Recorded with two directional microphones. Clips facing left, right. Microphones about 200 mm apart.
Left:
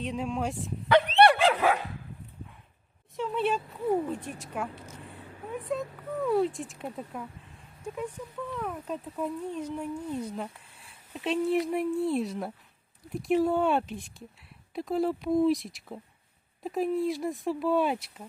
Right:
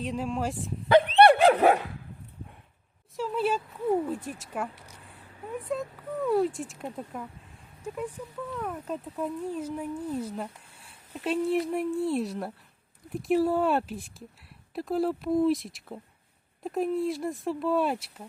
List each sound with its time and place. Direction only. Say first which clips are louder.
0.0 s speech: right 1 dB; centre (ahead or behind)
1.1 s dog: right 4 dB; 45° right (ahead or behind)
3.2 s speech: right 1 dB; centre (ahead or behind)
8.5 s speech: right 1 dB; centre (ahead or behind)